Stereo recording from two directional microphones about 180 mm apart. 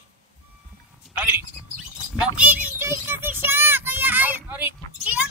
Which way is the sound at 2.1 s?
10° right (ahead or behind).